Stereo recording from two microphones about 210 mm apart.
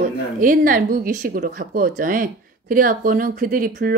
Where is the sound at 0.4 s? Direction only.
40° right (ahead or behind).